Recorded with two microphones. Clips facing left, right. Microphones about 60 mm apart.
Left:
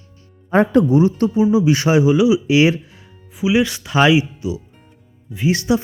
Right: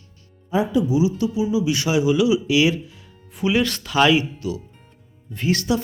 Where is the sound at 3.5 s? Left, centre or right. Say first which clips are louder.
Left 3 dB; centre.